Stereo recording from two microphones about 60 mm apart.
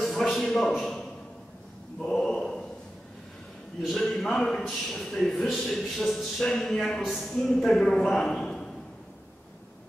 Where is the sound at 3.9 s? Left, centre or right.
Centre.